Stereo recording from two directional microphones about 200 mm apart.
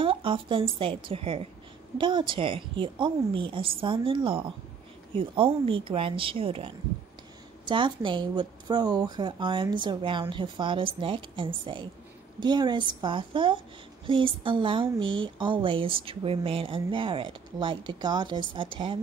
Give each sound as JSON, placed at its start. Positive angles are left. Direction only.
{"t": 0.0, "sound": "a woman's voice", "side_deg": -25}